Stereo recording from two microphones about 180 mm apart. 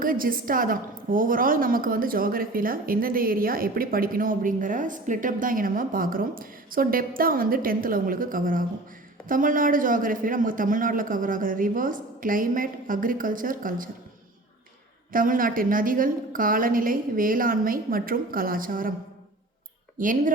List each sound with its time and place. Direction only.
0.0 s a woman's voice: 50° right (ahead or behind)
15.1 s a woman's voice: 50° right (ahead or behind)
20.0 s a woman's voice: 50° right (ahead or behind)